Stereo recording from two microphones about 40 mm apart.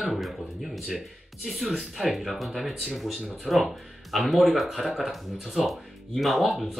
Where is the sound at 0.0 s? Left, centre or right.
Centre.